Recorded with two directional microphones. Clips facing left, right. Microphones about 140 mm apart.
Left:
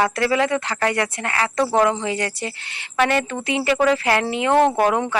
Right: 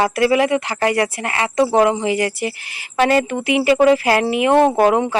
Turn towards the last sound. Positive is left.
turn(degrees=-25)  # may be behind; listen again after turning